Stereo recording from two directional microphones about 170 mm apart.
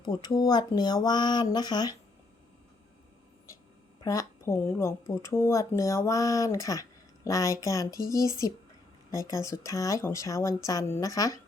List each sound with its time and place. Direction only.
0.0 s speech: 25° left (ahead or behind)
4.0 s speech: 20° left (ahead or behind)